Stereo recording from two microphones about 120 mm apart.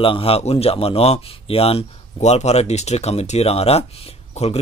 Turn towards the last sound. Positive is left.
turn(degrees=60)  # may be behind; listen again after turning